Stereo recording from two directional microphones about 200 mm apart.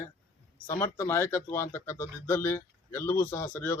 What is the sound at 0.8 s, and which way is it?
Speech, 10° left (ahead or behind).